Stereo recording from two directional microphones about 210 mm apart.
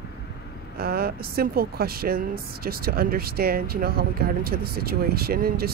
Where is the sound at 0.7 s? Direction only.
45° right (ahead or behind).